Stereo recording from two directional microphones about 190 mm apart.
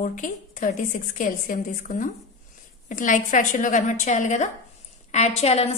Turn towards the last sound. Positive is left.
turn(degrees=35)  # may be behind; listen again after turning